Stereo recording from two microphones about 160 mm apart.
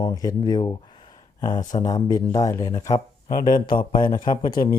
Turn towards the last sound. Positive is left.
turn(degrees=25)  # may be behind; listen again after turning